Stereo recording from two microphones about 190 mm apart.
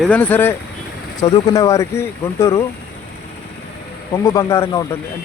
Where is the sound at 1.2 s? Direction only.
20° left (ahead or behind).